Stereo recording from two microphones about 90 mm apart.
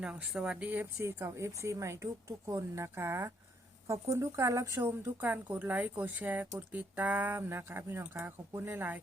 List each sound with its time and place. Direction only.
0.0 s speech: 10° right (ahead or behind)
0.9 s speech: 30° right (ahead or behind)